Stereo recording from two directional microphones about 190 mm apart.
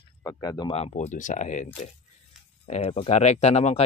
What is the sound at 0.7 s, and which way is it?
Speech, 35° left (ahead or behind).